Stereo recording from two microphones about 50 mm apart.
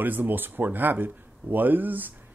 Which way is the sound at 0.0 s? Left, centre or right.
Right.